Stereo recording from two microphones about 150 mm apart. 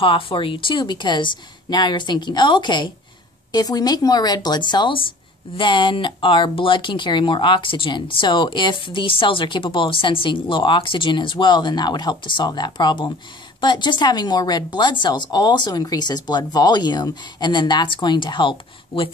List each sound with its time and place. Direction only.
0.0 s speech: 35° left (ahead or behind)